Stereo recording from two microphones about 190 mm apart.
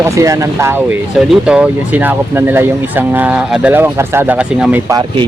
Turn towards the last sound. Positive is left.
turn(degrees=-20)  # may be behind; listen again after turning